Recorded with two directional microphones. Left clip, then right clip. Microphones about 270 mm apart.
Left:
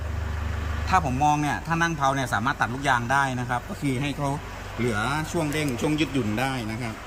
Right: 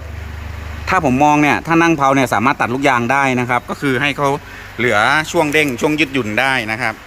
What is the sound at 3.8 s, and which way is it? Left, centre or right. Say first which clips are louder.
Speech: right 15 dB; centre.